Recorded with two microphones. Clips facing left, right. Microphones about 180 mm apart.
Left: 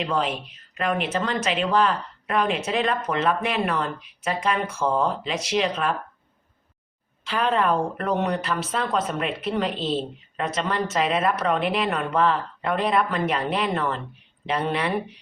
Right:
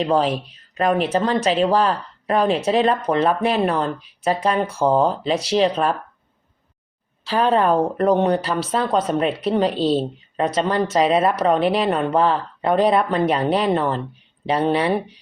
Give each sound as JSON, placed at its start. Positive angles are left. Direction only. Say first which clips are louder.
{"t": 0.0, "sound": "a woman's voice", "louder": "right 6 dB", "side_deg": -35}
{"t": 7.3, "sound": "a woman's voice", "louder": "right 5 dB", "side_deg": -35}